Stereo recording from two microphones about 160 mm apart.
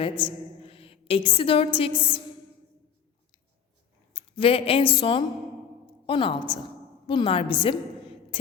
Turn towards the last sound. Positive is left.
turn(degrees=30)  # may be behind; listen again after turning